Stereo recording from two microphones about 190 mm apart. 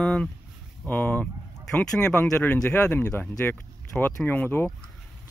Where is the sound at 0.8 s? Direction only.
10° left (ahead or behind).